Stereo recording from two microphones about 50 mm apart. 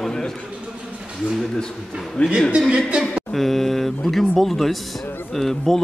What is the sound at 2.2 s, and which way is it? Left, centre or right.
Speech, left.